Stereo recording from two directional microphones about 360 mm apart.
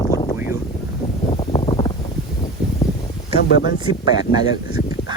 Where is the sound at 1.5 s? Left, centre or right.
Centre.